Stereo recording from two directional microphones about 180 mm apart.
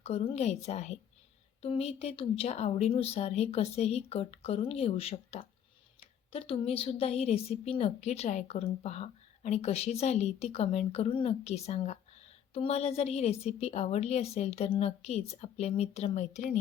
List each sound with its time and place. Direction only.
0.0 s a woman's voice: 35° left (ahead or behind)